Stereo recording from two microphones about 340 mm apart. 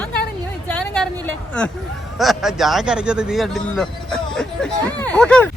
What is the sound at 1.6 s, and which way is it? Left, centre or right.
Speech, centre.